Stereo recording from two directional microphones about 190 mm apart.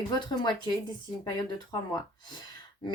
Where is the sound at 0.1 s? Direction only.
20° left (ahead or behind).